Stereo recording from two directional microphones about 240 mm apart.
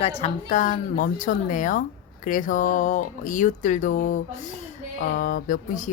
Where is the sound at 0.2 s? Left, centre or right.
Left.